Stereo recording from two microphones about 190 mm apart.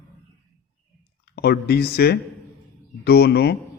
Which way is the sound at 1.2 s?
60° left (ahead or behind).